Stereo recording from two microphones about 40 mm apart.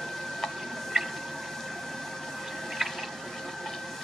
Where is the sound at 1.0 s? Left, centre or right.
Centre.